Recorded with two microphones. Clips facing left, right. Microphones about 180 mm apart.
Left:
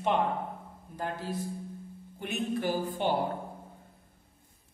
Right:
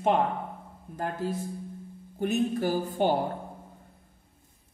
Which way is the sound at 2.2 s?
40° right (ahead or behind).